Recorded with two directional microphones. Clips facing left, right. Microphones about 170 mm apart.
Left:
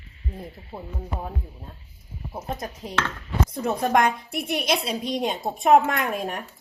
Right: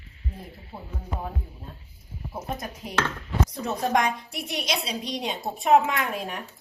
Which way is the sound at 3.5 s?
55° left (ahead or behind).